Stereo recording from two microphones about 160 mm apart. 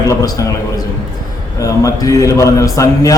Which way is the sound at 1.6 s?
20° left (ahead or behind).